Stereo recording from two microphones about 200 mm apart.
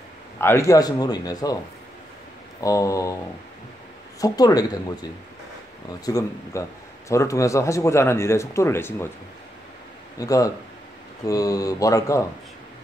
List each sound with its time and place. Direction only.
0.4 s a man's voice: 15° left (ahead or behind)
2.6 s speech: 15° left (ahead or behind)
4.2 s a man's voice: 20° left (ahead or behind)
5.9 s a man's voice: 20° left (ahead or behind)
10.1 s speech: 15° left (ahead or behind)